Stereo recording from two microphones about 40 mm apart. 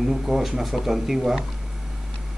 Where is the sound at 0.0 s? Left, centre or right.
Centre.